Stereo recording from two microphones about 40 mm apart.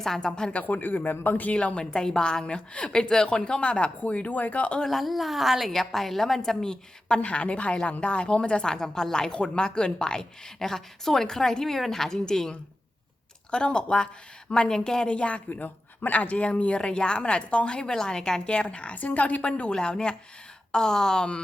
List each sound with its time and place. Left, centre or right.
0.0 s speech: centre
0.5 s speech: left
1.5 s a woman's voice: left
4.9 s a woman's voice: centre
7.2 s a woman's voice: left
19.7 s a woman's voice: left